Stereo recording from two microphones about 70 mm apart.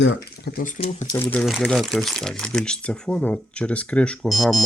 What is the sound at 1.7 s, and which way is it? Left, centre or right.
Speech, centre.